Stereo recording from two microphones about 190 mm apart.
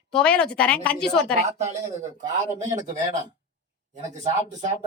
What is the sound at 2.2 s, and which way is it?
Speech, 40° right (ahead or behind).